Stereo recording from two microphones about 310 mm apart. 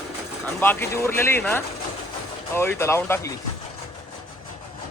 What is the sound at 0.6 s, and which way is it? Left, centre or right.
Speech, centre.